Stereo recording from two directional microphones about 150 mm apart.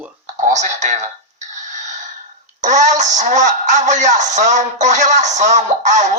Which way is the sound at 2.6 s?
55° right (ahead or behind).